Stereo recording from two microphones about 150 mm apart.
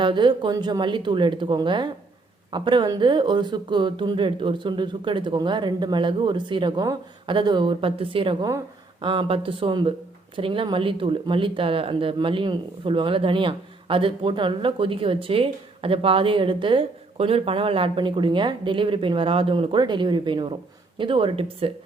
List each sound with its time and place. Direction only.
0.0 s speech: 30° right (ahead or behind)